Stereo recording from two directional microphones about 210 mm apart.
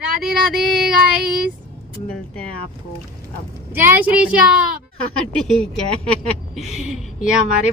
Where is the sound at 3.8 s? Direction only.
5° right (ahead or behind).